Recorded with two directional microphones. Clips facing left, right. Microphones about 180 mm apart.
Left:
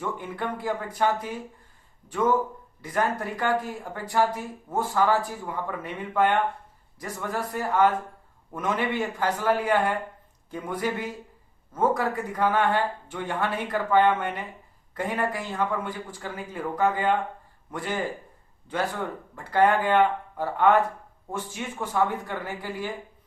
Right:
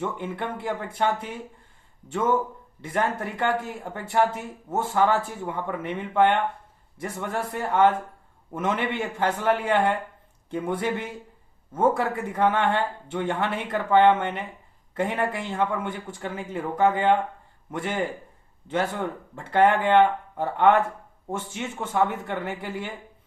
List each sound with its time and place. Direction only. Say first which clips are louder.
0.0 s speech: right 1 dB; 25° right (ahead or behind)
19.4 s speech: right 1 dB; 25° right (ahead or behind)